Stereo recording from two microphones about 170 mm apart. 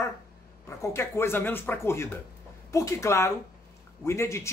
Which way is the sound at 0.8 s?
15° left (ahead or behind).